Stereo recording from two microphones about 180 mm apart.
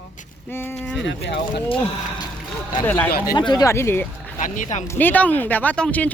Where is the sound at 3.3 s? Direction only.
25° left (ahead or behind).